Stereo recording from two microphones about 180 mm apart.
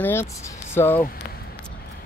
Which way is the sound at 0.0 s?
15° left (ahead or behind).